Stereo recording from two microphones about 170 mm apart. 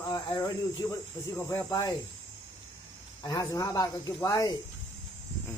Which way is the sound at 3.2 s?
20° left (ahead or behind).